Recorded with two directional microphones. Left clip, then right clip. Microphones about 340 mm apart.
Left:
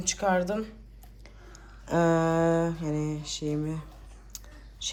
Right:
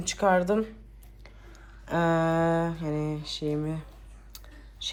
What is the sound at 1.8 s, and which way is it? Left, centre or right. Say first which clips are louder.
Mantra: left 1 dB; centre.